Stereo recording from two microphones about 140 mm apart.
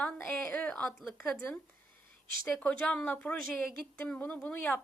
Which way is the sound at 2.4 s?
5° left (ahead or behind).